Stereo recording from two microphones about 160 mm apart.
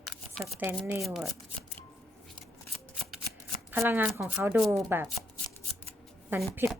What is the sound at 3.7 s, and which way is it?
A woman's voice, 15° right (ahead or behind).